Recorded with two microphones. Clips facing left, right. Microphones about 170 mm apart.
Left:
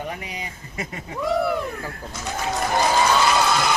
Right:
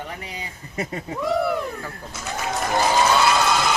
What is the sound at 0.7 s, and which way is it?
Speech, 35° right (ahead or behind).